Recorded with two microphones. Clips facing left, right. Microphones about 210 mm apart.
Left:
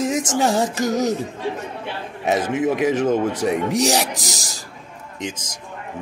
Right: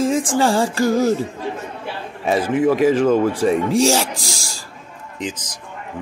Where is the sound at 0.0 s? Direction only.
20° left (ahead or behind).